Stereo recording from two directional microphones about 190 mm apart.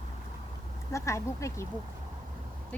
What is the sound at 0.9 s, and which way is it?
Speech, 15° left (ahead or behind).